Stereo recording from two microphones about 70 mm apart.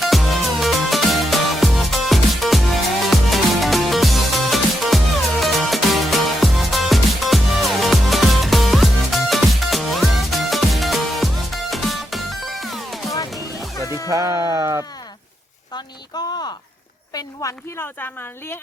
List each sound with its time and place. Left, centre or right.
0.0 s music: centre
13.8 s music: left
14.1 s sheep: right
15.7 s speech: left
17.4 s speech: left
17.7 s speech: left